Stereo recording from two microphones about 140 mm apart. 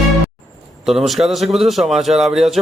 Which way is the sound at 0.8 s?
Centre (ahead or behind).